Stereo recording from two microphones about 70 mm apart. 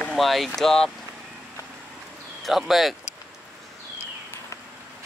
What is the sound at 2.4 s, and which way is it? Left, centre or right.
Speech, centre.